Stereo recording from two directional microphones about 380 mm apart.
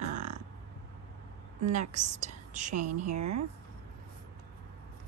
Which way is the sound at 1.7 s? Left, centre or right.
Centre.